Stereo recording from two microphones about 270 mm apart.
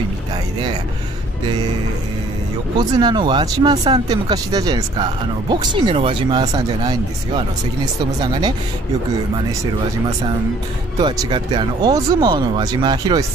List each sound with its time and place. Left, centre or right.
2.8 s speech: centre
11.0 s speech: centre